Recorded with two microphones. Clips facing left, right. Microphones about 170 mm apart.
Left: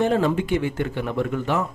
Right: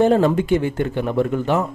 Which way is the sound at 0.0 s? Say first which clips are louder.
Right 5 dB; 40° right (ahead or behind).